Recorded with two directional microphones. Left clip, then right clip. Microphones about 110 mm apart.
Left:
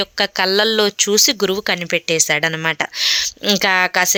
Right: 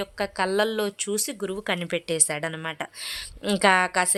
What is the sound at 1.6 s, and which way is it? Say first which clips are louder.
A woman's voice: left 9 dB; 10° left (ahead or behind).